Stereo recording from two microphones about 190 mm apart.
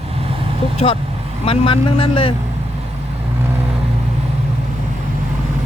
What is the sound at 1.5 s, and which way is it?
Speech, 30° left (ahead or behind).